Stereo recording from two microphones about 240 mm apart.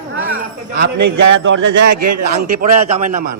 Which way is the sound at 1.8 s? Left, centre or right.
Right.